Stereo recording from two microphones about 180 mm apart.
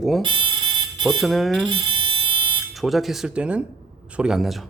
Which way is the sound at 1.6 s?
30° right (ahead or behind).